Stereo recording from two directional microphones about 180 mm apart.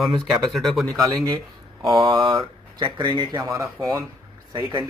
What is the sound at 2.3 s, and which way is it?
Speech, 25° right (ahead or behind).